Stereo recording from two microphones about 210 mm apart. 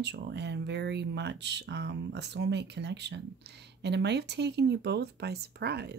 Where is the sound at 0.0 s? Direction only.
55° right (ahead or behind).